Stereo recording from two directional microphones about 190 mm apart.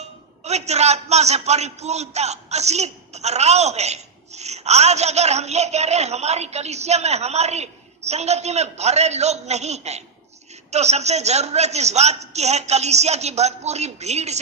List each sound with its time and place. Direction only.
0.4 s a man's voice: 35° right (ahead or behind)